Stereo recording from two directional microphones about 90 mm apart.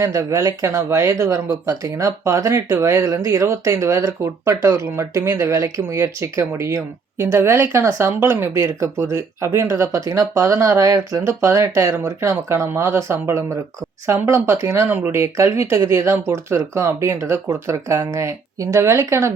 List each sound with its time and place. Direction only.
0.0 s a woman's voice: 35° right (ahead or behind)
14.8 s speech: 20° right (ahead or behind)